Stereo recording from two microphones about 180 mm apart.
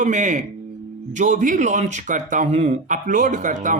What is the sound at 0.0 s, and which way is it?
Speech, 40° right (ahead or behind).